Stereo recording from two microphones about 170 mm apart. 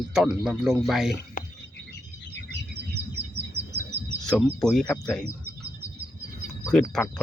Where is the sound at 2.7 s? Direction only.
75° right (ahead or behind).